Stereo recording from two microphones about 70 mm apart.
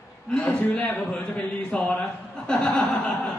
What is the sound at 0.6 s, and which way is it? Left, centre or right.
Speech, left.